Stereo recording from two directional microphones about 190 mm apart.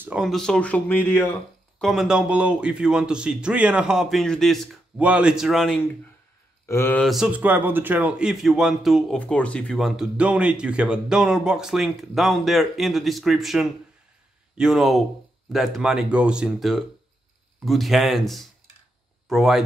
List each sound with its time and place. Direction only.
0.0 s speech: 5° right (ahead or behind)
1.8 s a man's voice: centre (ahead or behind)
6.7 s a man's voice: 10° left (ahead or behind)